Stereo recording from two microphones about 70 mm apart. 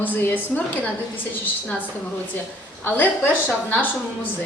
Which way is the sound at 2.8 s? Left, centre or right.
Left.